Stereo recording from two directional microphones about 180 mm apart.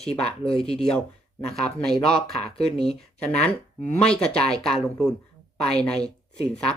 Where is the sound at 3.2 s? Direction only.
5° left (ahead or behind).